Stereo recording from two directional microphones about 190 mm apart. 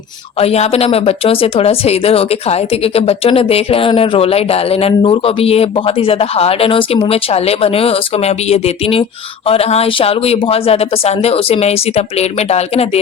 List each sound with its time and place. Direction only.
0.3 s a woman's voice: 35° left (ahead or behind)